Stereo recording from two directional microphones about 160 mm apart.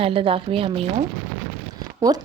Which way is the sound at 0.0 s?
35° right (ahead or behind).